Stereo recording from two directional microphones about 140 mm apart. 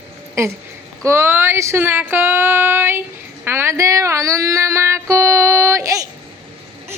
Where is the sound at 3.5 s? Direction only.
20° right (ahead or behind).